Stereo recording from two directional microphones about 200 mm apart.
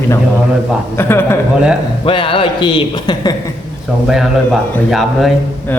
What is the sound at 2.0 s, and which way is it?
A man's voice, 25° left (ahead or behind).